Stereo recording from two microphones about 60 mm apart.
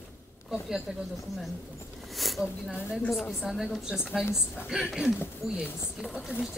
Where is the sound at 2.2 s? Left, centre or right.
Centre.